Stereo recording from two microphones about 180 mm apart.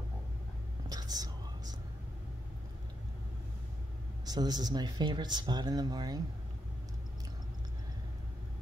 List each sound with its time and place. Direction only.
0.8 s whispering: 20° right (ahead or behind)
4.3 s speech: 20° right (ahead or behind)